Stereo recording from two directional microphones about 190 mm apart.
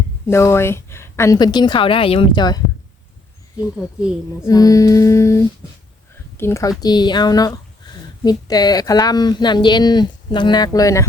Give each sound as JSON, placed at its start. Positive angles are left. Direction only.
{"t": 0.3, "sound": "speech", "side_deg": 15}
{"t": 4.4, "sound": "child singing", "side_deg": 20}
{"t": 6.3, "sound": "speech", "side_deg": 15}